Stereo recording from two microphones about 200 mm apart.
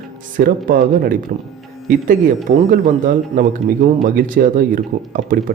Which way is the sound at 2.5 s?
40° right (ahead or behind).